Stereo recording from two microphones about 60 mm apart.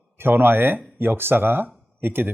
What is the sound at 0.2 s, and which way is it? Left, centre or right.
Speech, right.